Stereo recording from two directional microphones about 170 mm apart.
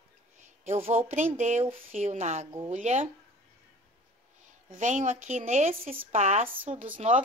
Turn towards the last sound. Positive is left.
turn(degrees=-40)  # may be behind; listen again after turning